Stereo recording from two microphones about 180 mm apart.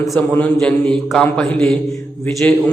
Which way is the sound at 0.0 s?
5° left (ahead or behind).